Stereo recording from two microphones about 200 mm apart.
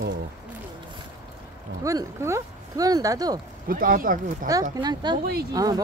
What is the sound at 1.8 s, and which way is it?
Speech, 15° right (ahead or behind).